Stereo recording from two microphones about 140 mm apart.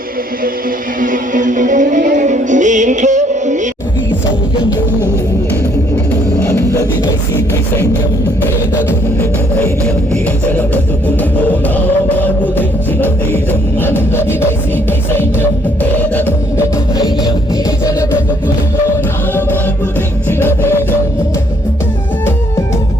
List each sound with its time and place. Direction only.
1.0 s music: 70° right (ahead or behind)
6.4 s a sound: 20° left (ahead or behind)
12.0 s music: 15° left (ahead or behind)
20.4 s music: 15° left (ahead or behind)